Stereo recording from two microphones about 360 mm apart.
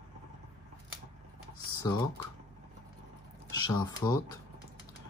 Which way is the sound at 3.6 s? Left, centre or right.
Centre.